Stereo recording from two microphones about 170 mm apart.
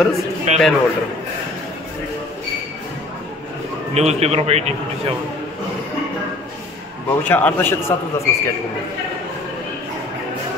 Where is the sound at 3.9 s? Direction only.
40° right (ahead or behind).